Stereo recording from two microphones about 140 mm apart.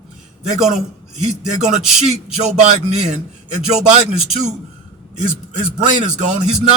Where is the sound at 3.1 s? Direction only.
55° right (ahead or behind).